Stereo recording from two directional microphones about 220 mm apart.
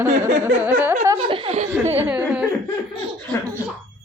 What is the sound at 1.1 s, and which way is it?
Speech, 25° right (ahead or behind).